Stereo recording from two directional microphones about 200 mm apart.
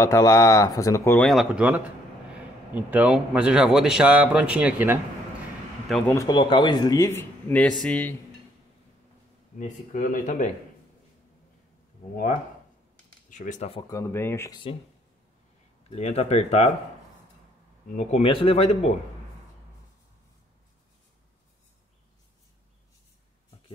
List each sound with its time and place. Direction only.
0.0 s speech: 15° left (ahead or behind)
1.3 s a man's voice: 5° right (ahead or behind)
6.1 s speech: 20° left (ahead or behind)
9.6 s a man's voice: 40° left (ahead or behind)
13.3 s a man's voice: 40° left (ahead or behind)
13.8 s speech: 15° left (ahead or behind)
15.9 s a man's voice: 30° left (ahead or behind)
17.8 s a man's voice: 35° left (ahead or behind)